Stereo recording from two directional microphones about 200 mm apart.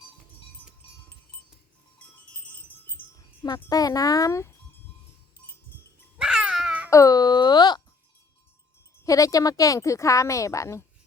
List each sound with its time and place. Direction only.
3.4 s a woman's voice: 20° left (ahead or behind)
6.1 s a sound: 5° right (ahead or behind)
6.9 s wail: 15° left (ahead or behind)
9.0 s a woman's voice: 15° left (ahead or behind)